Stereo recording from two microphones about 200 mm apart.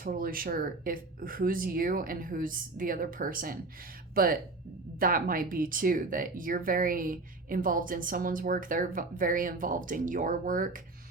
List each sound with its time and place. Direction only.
0.0 s speech: 45° right (ahead or behind)